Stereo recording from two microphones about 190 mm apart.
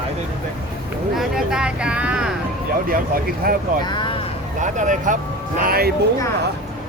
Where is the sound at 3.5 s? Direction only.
50° right (ahead or behind).